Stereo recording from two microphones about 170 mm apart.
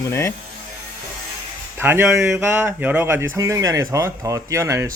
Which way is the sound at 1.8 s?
10° right (ahead or behind).